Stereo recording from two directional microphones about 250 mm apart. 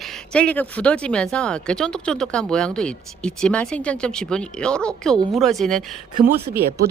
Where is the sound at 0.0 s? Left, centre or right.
Centre.